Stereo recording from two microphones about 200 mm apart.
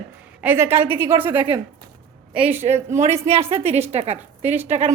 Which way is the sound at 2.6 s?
35° right (ahead or behind).